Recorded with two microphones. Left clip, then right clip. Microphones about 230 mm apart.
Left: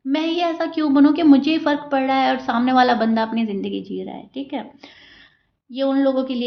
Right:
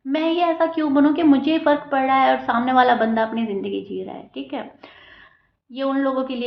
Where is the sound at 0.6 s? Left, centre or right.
Left.